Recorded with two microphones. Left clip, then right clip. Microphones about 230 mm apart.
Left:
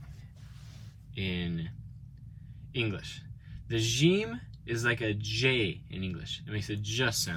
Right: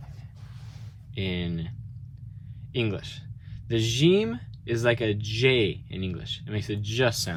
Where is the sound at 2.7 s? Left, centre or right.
Centre.